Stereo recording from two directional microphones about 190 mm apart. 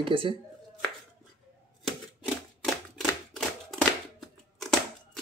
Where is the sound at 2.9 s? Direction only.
Centre (ahead or behind).